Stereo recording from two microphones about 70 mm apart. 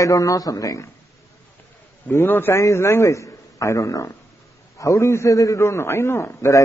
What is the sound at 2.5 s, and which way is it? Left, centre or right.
A man's voice, left.